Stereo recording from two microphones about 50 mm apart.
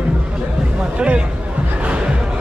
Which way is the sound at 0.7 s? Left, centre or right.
Right.